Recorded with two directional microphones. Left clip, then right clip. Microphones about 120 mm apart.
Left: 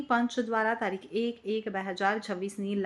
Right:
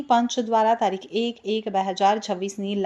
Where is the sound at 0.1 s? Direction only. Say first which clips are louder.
Right 8 dB; 30° right (ahead or behind).